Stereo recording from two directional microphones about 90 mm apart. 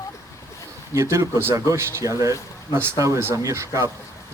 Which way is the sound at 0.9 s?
35° right (ahead or behind).